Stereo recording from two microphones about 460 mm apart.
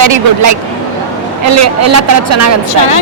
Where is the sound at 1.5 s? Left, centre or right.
Right.